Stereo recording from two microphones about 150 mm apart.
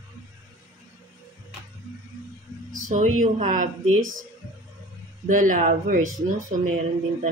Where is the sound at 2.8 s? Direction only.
55° right (ahead or behind).